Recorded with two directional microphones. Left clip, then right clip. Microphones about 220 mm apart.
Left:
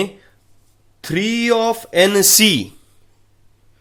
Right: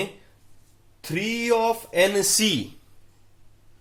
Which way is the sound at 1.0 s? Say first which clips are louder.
Left 7 dB; 50° left (ahead or behind).